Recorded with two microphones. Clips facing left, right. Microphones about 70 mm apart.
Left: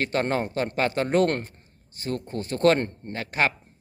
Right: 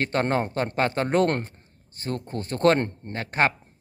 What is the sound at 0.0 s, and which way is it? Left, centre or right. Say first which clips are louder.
Speech: right 1 dB; right.